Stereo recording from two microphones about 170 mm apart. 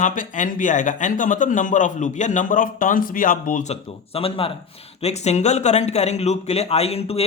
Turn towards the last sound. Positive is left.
turn(degrees=35)  # may be behind; listen again after turning